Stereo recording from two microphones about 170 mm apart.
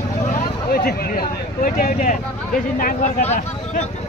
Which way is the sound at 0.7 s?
65° left (ahead or behind).